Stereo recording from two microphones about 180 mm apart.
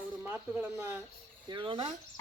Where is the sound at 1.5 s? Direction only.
25° right (ahead or behind).